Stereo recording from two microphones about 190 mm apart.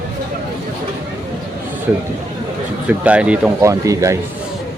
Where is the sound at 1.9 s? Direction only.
10° right (ahead or behind).